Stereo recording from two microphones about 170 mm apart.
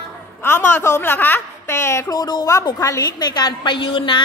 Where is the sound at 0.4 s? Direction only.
10° left (ahead or behind).